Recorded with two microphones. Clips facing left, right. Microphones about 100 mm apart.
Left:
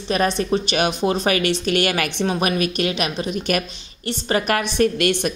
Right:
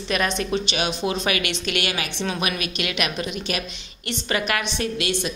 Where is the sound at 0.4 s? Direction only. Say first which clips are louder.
Left 5 dB; 35° left (ahead or behind); by 2.2 s 55° left (ahead or behind).